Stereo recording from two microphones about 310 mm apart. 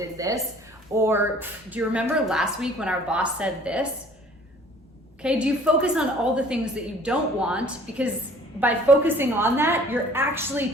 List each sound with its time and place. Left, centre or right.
0.2 s a woman's voice: centre
5.2 s a woman's voice: centre